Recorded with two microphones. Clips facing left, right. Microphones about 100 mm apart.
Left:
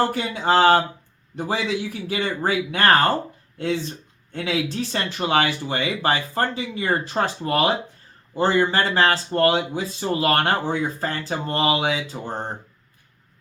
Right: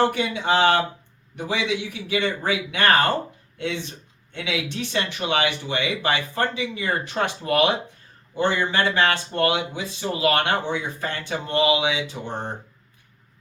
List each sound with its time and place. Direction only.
0.0 s speech: 35° left (ahead or behind)